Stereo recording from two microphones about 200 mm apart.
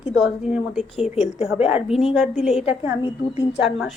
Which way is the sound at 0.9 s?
30° left (ahead or behind).